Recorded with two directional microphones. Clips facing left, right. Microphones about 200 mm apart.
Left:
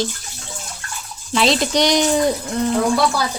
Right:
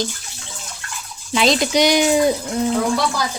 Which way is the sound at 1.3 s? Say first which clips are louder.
Even; centre (ahead or behind).